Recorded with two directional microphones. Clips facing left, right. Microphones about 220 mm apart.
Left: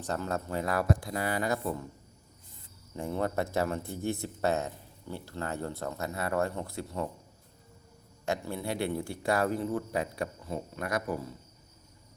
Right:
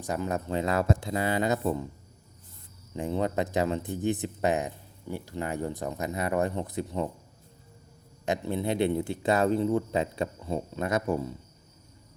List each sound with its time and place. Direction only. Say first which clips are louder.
0.0 s speech: right 3 dB; 15° right (ahead or behind)
2.9 s speech: right 3 dB; 20° right (ahead or behind)
8.2 s speech: right 4 dB; 20° right (ahead or behind)